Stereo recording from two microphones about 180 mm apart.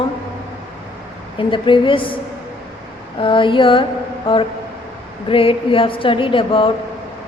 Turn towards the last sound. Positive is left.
turn(degrees=30)  # may be behind; listen again after turning